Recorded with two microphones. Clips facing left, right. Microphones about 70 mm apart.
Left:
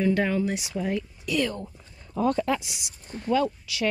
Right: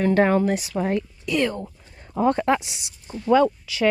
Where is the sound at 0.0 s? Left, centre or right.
Right.